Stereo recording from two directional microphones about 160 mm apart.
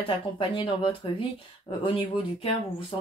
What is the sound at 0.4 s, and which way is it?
Speech, 30° left (ahead or behind).